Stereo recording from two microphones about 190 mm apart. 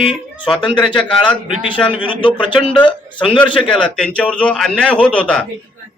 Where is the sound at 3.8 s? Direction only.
5° left (ahead or behind).